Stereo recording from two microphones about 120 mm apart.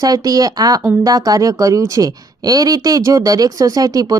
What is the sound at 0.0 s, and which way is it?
A woman's voice, 30° right (ahead or behind).